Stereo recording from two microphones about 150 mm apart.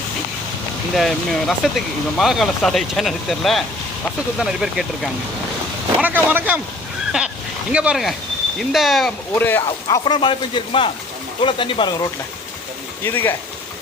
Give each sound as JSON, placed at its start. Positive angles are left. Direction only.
{"t": 0.9, "sound": "speech", "side_deg": 0}
{"t": 7.7, "sound": "speech", "side_deg": -5}
{"t": 9.3, "sound": "speech", "side_deg": 15}
{"t": 9.6, "sound": "speech", "side_deg": 30}
{"t": 13.1, "sound": "speech", "side_deg": 15}